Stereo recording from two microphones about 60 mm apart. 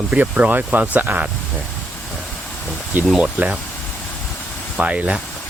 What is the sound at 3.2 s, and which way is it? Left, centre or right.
Speech, centre.